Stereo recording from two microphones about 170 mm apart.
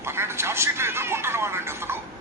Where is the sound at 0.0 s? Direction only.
15° right (ahead or behind).